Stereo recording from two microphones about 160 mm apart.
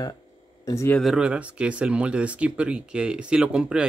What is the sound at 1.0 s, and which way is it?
Speech, 5° right (ahead or behind).